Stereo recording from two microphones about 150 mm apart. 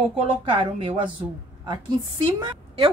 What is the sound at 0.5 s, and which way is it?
Speech, 35° right (ahead or behind).